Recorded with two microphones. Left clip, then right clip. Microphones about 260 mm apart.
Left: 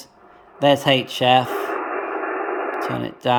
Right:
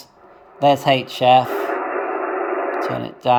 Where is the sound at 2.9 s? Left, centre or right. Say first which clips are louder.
Right 3 dB; centre.